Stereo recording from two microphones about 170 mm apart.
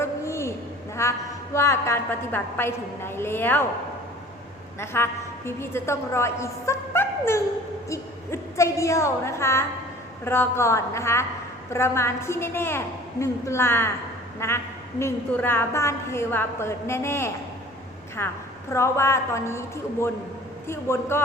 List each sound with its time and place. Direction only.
0.0 s a sound: 15° left (ahead or behind)
1.0 s a woman's voice: 15° left (ahead or behind)
4.9 s a woman's voice: 15° left (ahead or behind)